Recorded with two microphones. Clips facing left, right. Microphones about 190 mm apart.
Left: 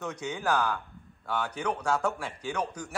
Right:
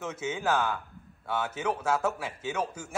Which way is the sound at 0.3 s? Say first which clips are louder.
Even; 5° right (ahead or behind).